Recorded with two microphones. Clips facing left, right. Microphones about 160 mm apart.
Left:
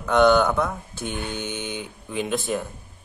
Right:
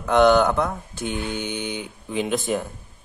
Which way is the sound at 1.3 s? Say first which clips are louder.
Right 2 dB; 10° right (ahead or behind).